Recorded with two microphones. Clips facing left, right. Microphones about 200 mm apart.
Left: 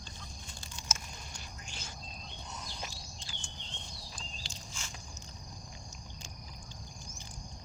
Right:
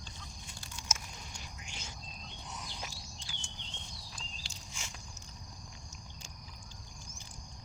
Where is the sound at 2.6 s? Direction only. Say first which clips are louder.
Left 1 dB; 10° right (ahead or behind).